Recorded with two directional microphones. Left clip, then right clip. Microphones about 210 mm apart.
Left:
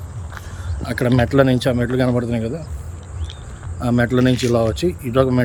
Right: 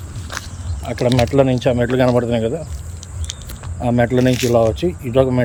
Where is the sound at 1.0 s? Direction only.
5° left (ahead or behind).